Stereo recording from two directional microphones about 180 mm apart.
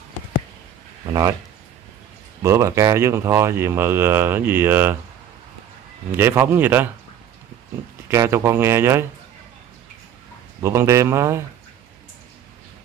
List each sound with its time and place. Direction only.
2.4 s speech: 15° right (ahead or behind)
6.1 s speech: 15° right (ahead or behind)
8.1 s speech: 15° right (ahead or behind)
10.6 s speech: 15° right (ahead or behind)